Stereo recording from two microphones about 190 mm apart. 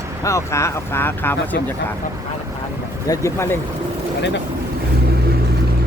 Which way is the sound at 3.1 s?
15° left (ahead or behind).